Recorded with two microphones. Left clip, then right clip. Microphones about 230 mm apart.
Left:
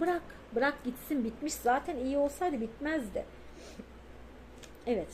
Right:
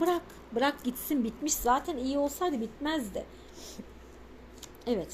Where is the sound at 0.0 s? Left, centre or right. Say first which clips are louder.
Right 3 dB; right.